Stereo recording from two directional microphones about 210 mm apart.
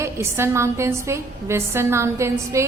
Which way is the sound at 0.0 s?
15° right (ahead or behind).